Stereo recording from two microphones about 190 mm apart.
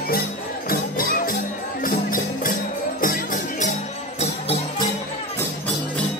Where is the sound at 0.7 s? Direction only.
50° left (ahead or behind).